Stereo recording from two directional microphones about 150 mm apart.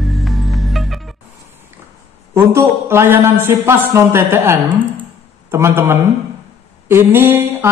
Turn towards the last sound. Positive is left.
turn(degrees=-15)  # may be behind; listen again after turning